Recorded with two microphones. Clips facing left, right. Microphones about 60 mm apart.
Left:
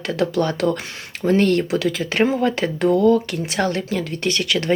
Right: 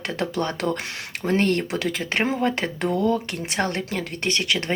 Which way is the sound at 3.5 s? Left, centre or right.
Right.